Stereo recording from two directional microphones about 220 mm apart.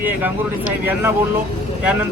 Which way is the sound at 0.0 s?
10° right (ahead or behind).